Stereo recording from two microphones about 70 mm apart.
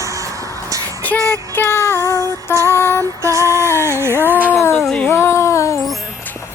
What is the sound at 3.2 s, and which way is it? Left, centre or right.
Music, right.